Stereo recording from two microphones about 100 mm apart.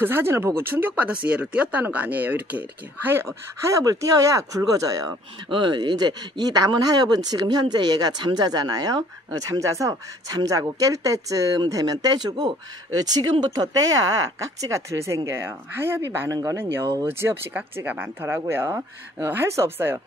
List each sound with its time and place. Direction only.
0.0 s speech: 25° right (ahead or behind)
3.7 s speech: 35° right (ahead or behind)
5.5 s speech: 50° right (ahead or behind); by 20.0 s 25° right (ahead or behind)